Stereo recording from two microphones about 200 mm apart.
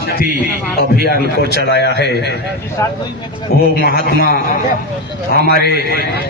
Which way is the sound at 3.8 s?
50° left (ahead or behind).